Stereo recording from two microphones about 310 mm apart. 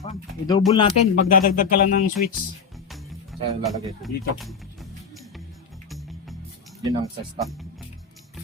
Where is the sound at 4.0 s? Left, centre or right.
Centre.